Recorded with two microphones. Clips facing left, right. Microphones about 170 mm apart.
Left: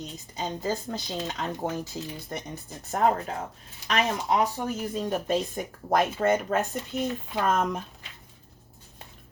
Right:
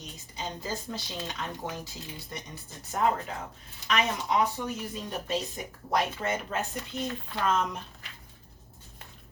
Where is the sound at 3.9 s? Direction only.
35° left (ahead or behind).